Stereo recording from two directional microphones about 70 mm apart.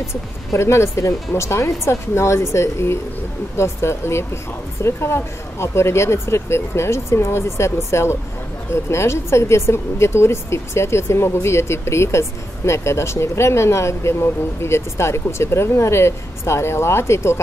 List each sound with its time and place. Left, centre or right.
0.5 s speech: left